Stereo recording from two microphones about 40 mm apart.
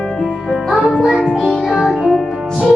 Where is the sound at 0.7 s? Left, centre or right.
Centre.